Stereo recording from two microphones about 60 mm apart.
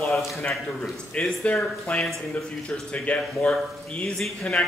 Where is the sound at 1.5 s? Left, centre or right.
Centre.